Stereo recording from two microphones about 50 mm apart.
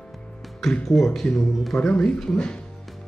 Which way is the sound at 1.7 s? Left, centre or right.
Centre.